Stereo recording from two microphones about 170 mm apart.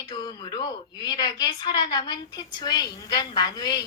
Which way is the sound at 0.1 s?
25° left (ahead or behind).